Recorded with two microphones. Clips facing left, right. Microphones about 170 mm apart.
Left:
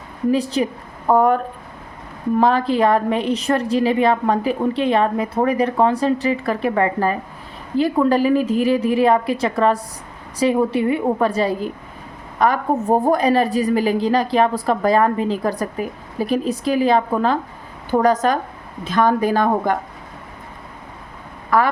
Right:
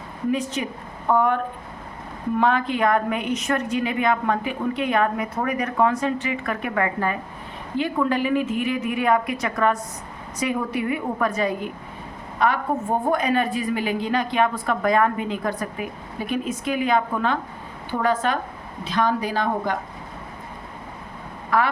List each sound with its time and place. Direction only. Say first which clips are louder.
0.3 s a woman's voice: left 6 dB; 35° left (ahead or behind)
2.4 s a woman's voice: left 5 dB; 35° left (ahead or behind)
21.5 s speech: left 4 dB; 45° left (ahead or behind)